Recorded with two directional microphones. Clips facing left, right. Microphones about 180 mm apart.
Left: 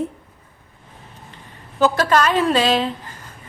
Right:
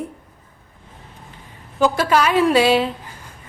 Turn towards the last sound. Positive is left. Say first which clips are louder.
# right 2 dB
turn(degrees=-10)  # may be behind; listen again after turning